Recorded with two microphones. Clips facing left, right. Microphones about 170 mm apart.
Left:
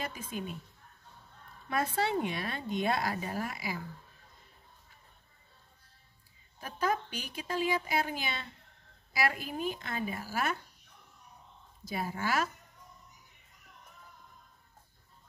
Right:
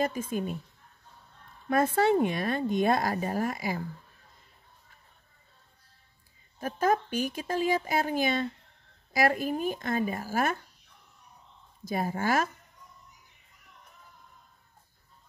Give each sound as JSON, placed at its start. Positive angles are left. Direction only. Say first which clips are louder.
{"t": 0.0, "sound": "speech", "louder": "right 9 dB", "side_deg": -45}
{"t": 1.7, "sound": "speech", "louder": "right 8 dB", "side_deg": -50}
{"t": 6.6, "sound": "speech", "louder": "right 6 dB", "side_deg": -50}
{"t": 11.8, "sound": "speech", "louder": "right 5 dB", "side_deg": -45}